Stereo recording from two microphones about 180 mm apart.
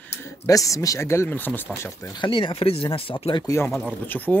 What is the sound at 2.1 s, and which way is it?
Speech, 30° left (ahead or behind).